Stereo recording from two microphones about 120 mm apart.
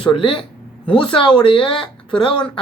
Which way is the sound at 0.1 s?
45° left (ahead or behind).